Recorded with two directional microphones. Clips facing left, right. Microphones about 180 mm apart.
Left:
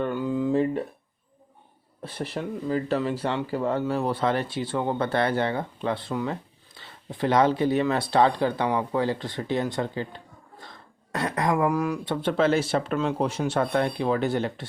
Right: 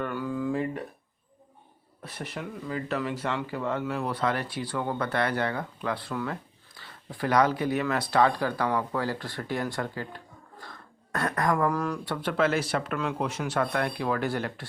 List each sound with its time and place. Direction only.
0.0 s a sound: 20° left (ahead or behind)
2.0 s speech: 30° left (ahead or behind); by 11.9 s 10° left (ahead or behind)
12.0 s speech: 25° left (ahead or behind)